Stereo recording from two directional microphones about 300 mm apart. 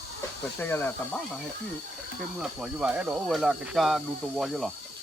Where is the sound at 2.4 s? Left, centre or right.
Centre.